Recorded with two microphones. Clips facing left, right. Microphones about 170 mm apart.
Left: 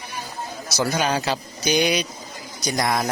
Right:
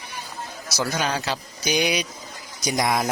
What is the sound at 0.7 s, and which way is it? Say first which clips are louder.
Speech: left 3 dB; 5° left (ahead or behind).